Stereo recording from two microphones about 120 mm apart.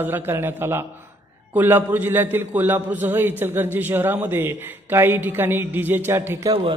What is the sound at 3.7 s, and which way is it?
A man's voice, 15° right (ahead or behind).